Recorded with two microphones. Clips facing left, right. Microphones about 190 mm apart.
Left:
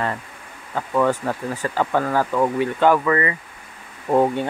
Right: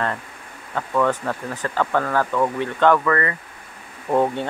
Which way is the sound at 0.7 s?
10° left (ahead or behind).